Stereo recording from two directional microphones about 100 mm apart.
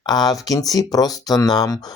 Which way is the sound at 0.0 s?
40° left (ahead or behind).